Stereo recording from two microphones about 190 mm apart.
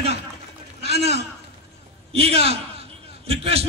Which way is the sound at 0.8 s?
35° right (ahead or behind).